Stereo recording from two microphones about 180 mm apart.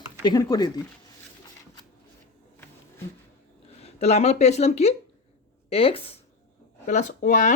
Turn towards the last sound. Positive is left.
turn(degrees=45)  # may be behind; listen again after turning